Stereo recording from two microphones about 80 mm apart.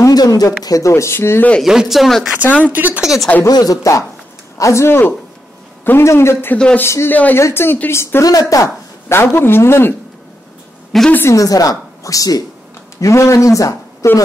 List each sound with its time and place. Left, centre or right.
0.0 s speech: left
1.6 s speech: centre
2.7 s speech: right
3.0 s speech: centre
3.4 s a woman's voice: left
6.5 s speech: centre
6.8 s speech: left
8.3 s a woman's voice: left
9.1 s speech: left
10.9 s speech: centre
11.2 s a woman's voice: left